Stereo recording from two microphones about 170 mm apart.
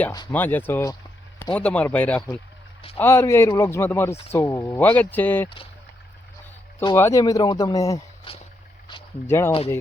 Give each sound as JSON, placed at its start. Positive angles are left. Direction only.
{"t": 0.3, "sound": "speech", "side_deg": 10}
{"t": 6.9, "sound": "speech", "side_deg": 15}
{"t": 8.9, "sound": "a sound", "side_deg": 25}
{"t": 9.2, "sound": "speech", "side_deg": 15}